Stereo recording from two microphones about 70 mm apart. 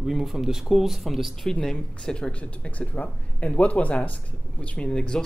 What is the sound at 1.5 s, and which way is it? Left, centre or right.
Speech, centre.